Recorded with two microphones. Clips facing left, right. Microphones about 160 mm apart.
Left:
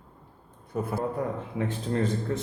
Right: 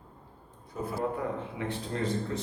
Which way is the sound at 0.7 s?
55° left (ahead or behind).